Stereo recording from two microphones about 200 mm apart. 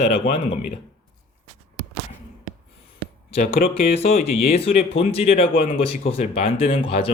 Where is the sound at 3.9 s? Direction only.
30° left (ahead or behind).